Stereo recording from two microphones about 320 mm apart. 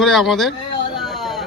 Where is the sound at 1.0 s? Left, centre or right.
Centre.